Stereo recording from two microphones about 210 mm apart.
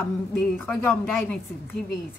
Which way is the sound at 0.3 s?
10° left (ahead or behind).